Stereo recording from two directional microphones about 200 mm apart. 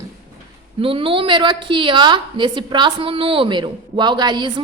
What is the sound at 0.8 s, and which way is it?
A woman's voice, 25° right (ahead or behind).